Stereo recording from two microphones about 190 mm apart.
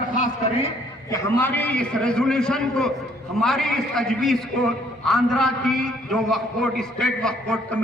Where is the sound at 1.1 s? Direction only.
15° left (ahead or behind).